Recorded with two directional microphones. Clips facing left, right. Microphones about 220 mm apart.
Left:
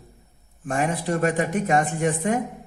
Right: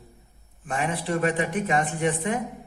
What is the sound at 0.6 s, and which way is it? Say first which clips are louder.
Speech: left 3 dB; 45° left (ahead or behind).